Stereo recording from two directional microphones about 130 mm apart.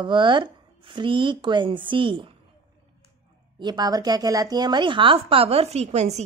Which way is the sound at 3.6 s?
30° right (ahead or behind).